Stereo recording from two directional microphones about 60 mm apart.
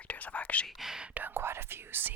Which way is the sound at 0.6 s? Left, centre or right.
Centre.